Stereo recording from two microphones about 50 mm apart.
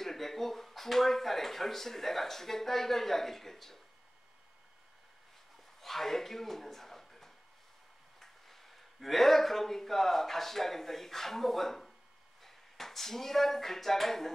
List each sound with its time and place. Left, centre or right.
0.0 s speech: centre
5.8 s a sound: centre
8.2 s speech: centre